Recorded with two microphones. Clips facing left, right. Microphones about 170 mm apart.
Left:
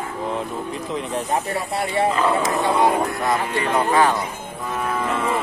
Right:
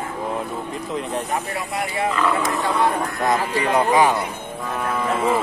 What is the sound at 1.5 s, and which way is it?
Speech, 30° left (ahead or behind).